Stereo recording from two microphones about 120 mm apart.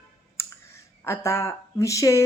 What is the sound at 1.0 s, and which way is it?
A woman's voice, 25° left (ahead or behind).